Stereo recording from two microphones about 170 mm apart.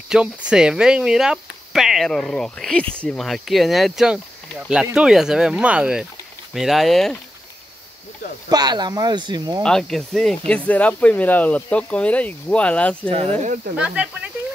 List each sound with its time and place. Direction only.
0.1 s speech: 5° right (ahead or behind)
8.5 s speech: 25° right (ahead or behind)
9.6 s speech: 5° left (ahead or behind)
13.1 s speech: 35° right (ahead or behind)
13.7 s speech: 5° right (ahead or behind)